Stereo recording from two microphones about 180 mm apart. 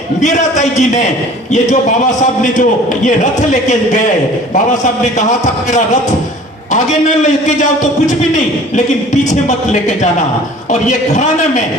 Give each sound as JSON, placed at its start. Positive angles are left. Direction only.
{"t": 0.2, "sound": "a man's voice", "side_deg": 40}
{"t": 9.3, "sound": "a man's voice", "side_deg": 40}